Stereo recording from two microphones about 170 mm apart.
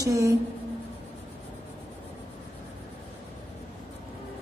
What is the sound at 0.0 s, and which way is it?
Speech, 20° right (ahead or behind).